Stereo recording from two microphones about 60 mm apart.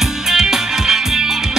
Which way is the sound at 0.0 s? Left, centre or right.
Centre.